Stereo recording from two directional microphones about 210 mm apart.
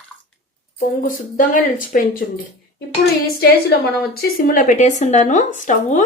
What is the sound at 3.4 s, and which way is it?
Speech, 45° left (ahead or behind).